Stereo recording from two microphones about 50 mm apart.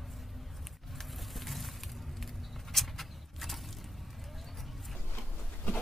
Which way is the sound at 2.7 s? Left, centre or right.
Centre.